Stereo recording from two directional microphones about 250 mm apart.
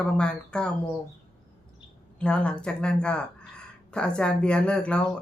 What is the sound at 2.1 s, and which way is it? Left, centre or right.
Speech, centre.